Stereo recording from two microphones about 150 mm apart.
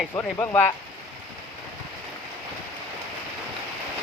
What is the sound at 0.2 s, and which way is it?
Speech, 20° left (ahead or behind).